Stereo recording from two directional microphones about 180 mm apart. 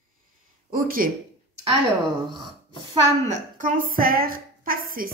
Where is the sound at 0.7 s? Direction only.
50° right (ahead or behind).